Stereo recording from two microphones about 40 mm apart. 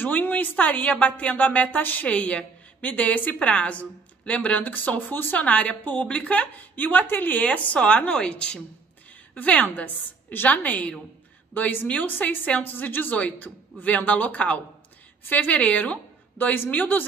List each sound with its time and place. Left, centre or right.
0.0 s speech: left
2.0 s a woman's voice: left
2.8 s speech: left
3.3 s a woman's voice: left
4.7 s speech: left
5.4 s a woman's voice: left
7.3 s a woman's voice: left
8.1 s a woman's voice: left
9.3 s a woman's voice: left
12.7 s a woman's voice: left
13.8 s a woman's voice: left
16.3 s speech: left